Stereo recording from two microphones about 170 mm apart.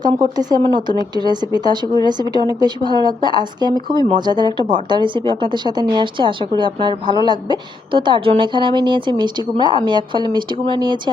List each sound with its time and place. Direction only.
0.0 s speech: 25° right (ahead or behind)